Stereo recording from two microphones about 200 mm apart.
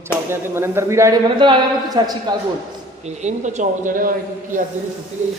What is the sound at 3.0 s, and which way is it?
Speech, 35° right (ahead or behind).